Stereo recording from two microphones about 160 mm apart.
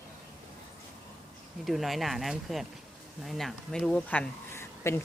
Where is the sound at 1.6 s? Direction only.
Centre (ahead or behind).